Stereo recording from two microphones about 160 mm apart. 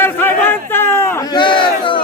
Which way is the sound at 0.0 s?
15° left (ahead or behind).